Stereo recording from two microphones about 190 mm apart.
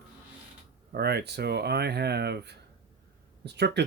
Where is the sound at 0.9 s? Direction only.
60° right (ahead or behind).